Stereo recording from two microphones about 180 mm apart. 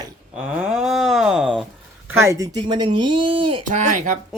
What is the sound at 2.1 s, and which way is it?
Speech, 15° right (ahead or behind).